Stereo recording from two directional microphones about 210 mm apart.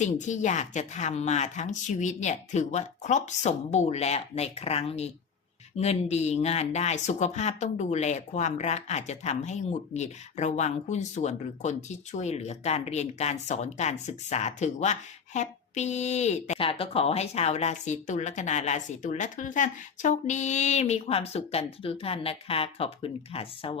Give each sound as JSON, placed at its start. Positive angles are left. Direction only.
{"t": 0.0, "sound": "speech", "side_deg": 35}